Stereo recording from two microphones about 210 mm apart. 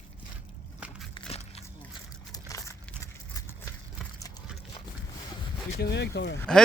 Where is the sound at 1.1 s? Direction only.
30° left (ahead or behind).